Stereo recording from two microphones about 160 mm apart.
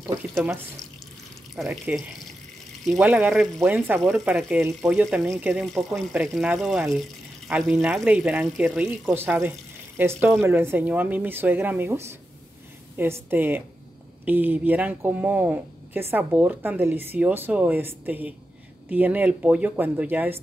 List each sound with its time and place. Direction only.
1.5 s speech: centre (ahead or behind)
4.1 s speech: 15° right (ahead or behind)
4.4 s speech: 5° right (ahead or behind)